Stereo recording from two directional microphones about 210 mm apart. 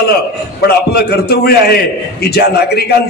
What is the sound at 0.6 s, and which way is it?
A man's voice, 50° left (ahead or behind).